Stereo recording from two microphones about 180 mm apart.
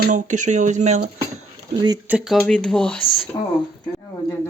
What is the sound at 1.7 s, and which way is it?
Speech, 25° right (ahead or behind).